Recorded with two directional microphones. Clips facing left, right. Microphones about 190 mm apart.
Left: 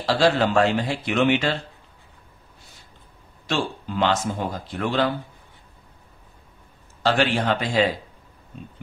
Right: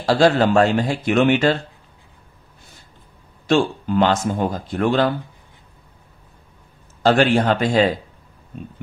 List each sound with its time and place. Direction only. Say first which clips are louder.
0.0 s speech: right 4 dB; 45° right (ahead or behind)
3.4 s speech: right 8 dB; 50° right (ahead or behind)
7.0 s speech: right 6 dB; 50° right (ahead or behind)